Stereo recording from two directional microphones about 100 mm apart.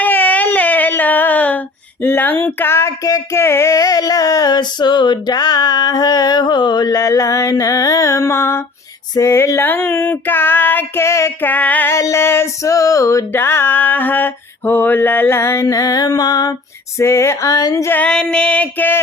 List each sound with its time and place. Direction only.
0.0 s a sound: 15° left (ahead or behind)
3.4 s female singing: 25° left (ahead or behind)
11.9 s female singing: 30° left (ahead or behind)
17.0 s female singing: 30° left (ahead or behind)
17.9 s female singing: 10° left (ahead or behind)